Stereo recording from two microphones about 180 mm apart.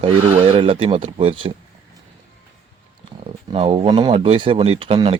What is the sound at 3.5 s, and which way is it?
Speech, 30° right (ahead or behind).